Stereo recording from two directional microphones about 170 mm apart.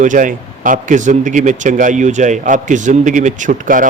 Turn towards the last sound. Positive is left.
turn(degrees=-50)  # may be behind; listen again after turning